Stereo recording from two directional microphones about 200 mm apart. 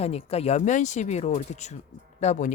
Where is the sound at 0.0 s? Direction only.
30° left (ahead or behind).